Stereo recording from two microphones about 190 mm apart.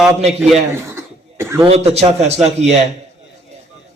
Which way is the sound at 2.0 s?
35° right (ahead or behind).